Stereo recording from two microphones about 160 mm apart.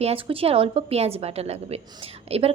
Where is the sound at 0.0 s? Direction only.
35° right (ahead or behind).